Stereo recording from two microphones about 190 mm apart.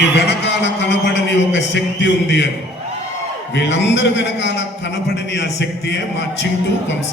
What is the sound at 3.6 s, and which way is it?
A man's voice, 70° left (ahead or behind).